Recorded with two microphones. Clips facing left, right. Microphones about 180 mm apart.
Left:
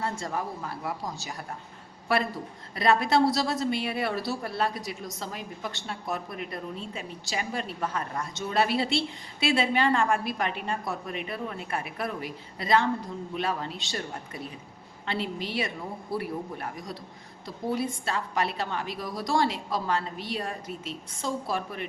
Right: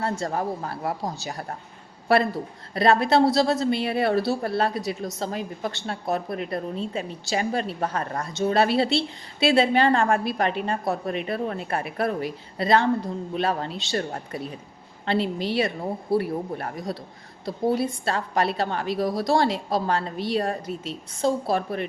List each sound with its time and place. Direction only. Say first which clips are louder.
0.0 s a woman's voice: right 5 dB; 35° right (ahead or behind)
2.7 s a woman's voice: right 4 dB; 30° right (ahead or behind)
15.0 s a woman's voice: right 7 dB; 30° right (ahead or behind)